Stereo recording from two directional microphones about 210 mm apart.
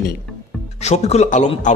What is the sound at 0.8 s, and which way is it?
Speech, 30° left (ahead or behind).